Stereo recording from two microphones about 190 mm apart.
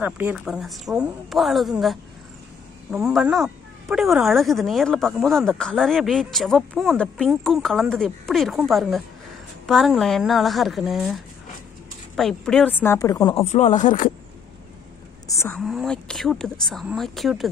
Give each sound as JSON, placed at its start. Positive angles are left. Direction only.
{"t": 0.0, "sound": "speech", "side_deg": -10}
{"t": 12.8, "sound": "a woman's voice", "side_deg": 15}
{"t": 13.5, "sound": "speech", "side_deg": 35}
{"t": 15.2, "sound": "a woman's voice", "side_deg": 15}
{"t": 15.6, "sound": "speech", "side_deg": 0}